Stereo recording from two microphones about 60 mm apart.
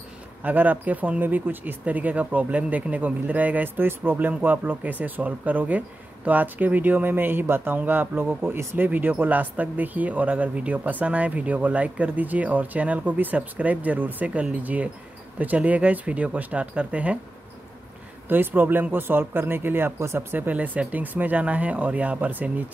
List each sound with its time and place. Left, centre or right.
0.4 s speech: right
18.3 s speech: right
20.3 s speech: right